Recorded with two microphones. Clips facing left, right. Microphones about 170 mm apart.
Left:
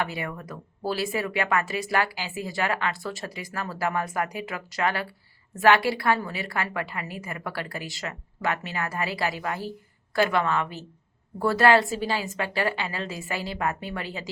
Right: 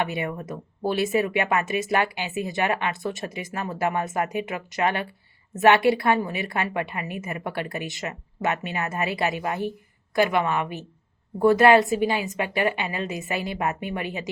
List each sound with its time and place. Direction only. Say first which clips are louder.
0.0 s a woman's voice: right 3 dB; 20° right (ahead or behind)